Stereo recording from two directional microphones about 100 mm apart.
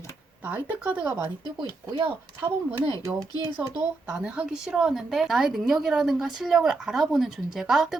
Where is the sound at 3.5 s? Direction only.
15° right (ahead or behind).